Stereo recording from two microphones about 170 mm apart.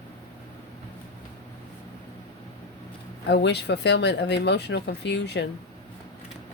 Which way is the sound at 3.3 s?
80° left.